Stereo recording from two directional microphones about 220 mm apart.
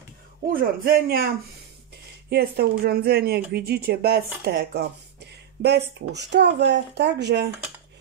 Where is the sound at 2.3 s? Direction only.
45° right (ahead or behind).